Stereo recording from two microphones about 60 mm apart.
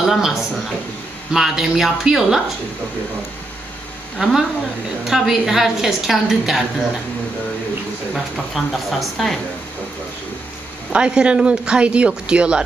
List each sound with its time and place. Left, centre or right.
0.0 s a woman's voice: centre
4.2 s a woman's voice: centre
8.1 s a woman's voice: centre
10.9 s speech: centre